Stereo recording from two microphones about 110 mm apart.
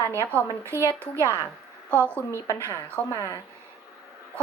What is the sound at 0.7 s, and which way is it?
Speech, 20° right (ahead or behind).